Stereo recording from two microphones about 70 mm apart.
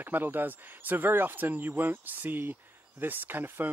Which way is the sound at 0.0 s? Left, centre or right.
Right.